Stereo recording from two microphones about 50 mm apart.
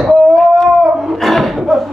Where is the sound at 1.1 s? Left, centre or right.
Centre.